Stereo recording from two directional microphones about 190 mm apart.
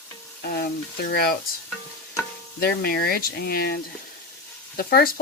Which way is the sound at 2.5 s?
55° left (ahead or behind).